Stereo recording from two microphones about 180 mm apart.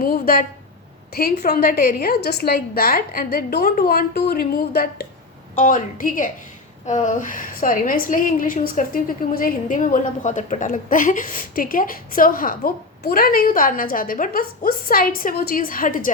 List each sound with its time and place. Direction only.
0.0 s a woman's voice: 55° left (ahead or behind)